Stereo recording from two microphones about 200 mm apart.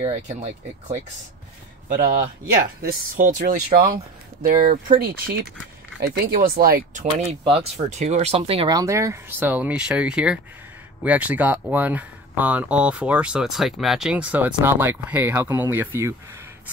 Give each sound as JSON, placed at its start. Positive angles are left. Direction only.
{"t": 0.0, "sound": "speech", "side_deg": -30}
{"t": 2.8, "sound": "speech", "side_deg": -45}